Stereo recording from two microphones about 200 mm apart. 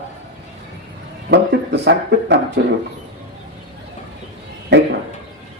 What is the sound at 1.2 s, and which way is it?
A man's voice, 55° right (ahead or behind).